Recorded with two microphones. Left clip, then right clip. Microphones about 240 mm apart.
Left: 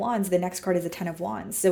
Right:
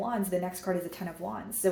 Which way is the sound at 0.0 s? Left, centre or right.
Left.